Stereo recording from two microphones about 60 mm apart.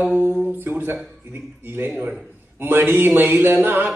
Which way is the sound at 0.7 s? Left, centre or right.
Right.